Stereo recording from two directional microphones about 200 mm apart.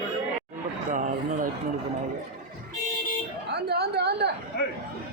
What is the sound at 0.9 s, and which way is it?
Speech, 40° right (ahead or behind).